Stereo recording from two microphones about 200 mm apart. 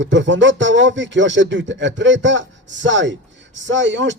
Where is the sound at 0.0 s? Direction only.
65° right (ahead or behind).